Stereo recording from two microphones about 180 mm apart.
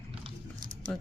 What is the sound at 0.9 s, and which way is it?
Speech, 5° left (ahead or behind).